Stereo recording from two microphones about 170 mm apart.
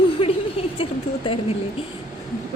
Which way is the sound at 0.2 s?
35° left (ahead or behind).